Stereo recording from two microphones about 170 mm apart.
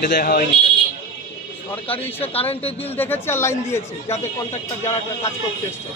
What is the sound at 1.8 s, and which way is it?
Speech, 35° left (ahead or behind).